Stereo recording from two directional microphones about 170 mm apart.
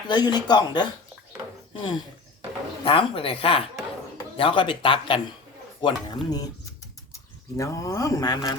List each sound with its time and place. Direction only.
0.1 s speech: 25° left (ahead or behind)